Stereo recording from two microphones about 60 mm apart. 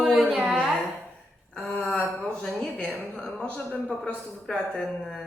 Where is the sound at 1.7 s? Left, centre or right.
Left.